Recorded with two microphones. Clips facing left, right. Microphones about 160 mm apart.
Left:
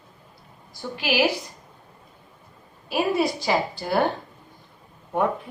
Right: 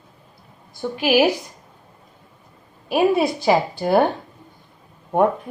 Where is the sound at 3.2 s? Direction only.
55° right (ahead or behind).